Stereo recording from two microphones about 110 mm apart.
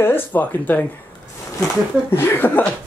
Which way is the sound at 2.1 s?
20° left (ahead or behind).